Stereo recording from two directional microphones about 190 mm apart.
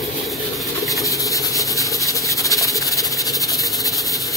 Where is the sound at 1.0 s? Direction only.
15° left (ahead or behind).